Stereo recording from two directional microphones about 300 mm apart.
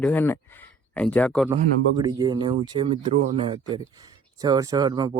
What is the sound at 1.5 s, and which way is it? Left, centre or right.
Speech, centre.